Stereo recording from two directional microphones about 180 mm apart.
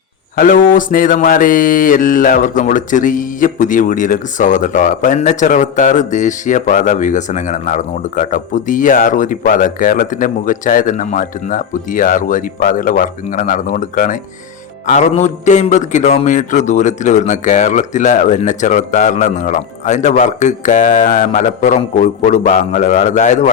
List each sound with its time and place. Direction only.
0.3 s mantra: 50° left (ahead or behind)